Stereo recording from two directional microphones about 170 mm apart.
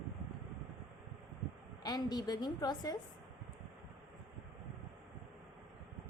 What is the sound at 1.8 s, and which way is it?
A woman's voice, 25° left (ahead or behind).